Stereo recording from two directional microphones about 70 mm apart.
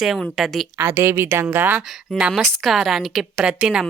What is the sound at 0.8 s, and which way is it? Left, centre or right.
Speech, right.